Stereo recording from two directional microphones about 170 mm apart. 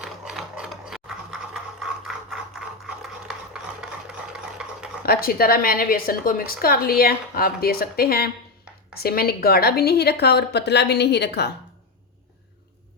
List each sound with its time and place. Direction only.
0.0 s a sound: 5° right (ahead or behind)
4.6 s stir: 5° right (ahead or behind)
5.0 s a woman's voice: 60° left (ahead or behind); by 11.5 s 80° left